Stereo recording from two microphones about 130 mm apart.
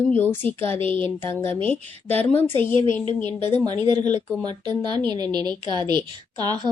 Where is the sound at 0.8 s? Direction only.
40° right (ahead or behind).